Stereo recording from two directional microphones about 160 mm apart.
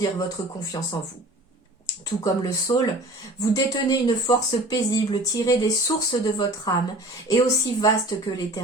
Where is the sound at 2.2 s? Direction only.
25° left (ahead or behind).